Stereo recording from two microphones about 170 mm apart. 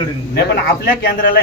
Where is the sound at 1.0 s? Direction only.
60° left (ahead or behind).